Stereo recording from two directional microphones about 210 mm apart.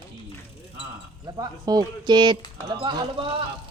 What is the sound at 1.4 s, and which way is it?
Speech, 20° right (ahead or behind).